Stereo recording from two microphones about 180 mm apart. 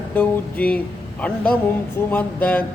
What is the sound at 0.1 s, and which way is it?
Speech, 10° left (ahead or behind).